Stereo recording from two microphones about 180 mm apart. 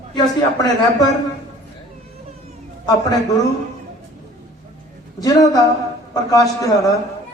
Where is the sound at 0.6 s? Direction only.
20° left (ahead or behind).